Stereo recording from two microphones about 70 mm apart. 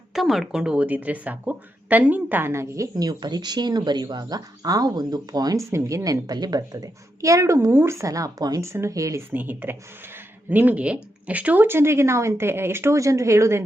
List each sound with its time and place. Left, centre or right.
0.1 s a woman's voice: centre; by 2.5 s right
2.5 s speech: right
2.9 s speech: right
5.5 s speech: right
6.2 s a woman's voice: right
8.6 s speech: right
9.3 s a woman's voice: right